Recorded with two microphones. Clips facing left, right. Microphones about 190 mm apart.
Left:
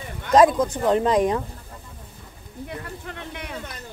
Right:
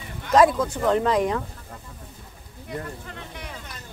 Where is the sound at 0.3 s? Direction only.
20° left (ahead or behind).